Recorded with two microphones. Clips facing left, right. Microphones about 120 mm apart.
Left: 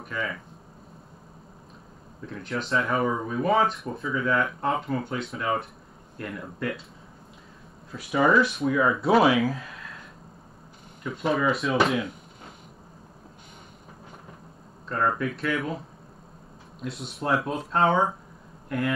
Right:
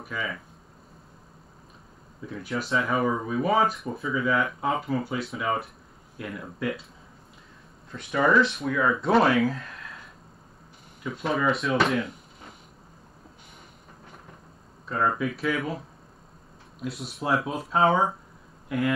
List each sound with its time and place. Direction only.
0.0 s speech: centre (ahead or behind)
2.2 s speech: 5° right (ahead or behind)
7.9 s speech: 5° left (ahead or behind)
11.1 s speech: centre (ahead or behind)
14.9 s speech: centre (ahead or behind)
16.8 s speech: centre (ahead or behind)